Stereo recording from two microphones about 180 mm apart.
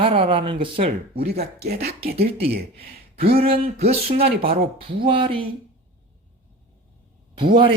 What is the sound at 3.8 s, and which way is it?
Speech, 35° right (ahead or behind).